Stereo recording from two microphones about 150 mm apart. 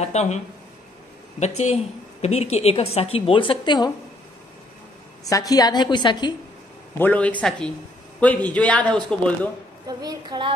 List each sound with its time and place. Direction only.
0.0 s speech: 50° left (ahead or behind)
1.4 s a woman's voice: 50° left (ahead or behind); by 3.9 s 30° left (ahead or behind)
5.2 s a woman's voice: 25° left (ahead or behind)
7.0 s a man's voice: 10° left (ahead or behind)
9.8 s a woman's voice: 30° right (ahead or behind)